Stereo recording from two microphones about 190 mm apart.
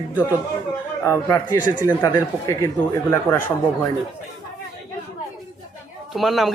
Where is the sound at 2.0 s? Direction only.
15° left (ahead or behind).